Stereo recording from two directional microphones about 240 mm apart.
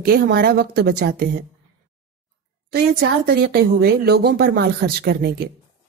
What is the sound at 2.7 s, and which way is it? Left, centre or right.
Speech, right.